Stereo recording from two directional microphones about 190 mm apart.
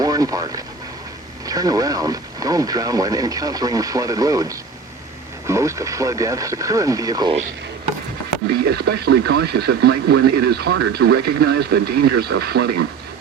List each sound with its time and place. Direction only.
0.0 s speech: 20° right (ahead or behind)
8.8 s speech: 60° right (ahead or behind)